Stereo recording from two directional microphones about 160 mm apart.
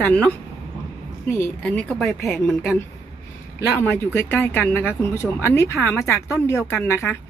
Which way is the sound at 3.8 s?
15° left (ahead or behind).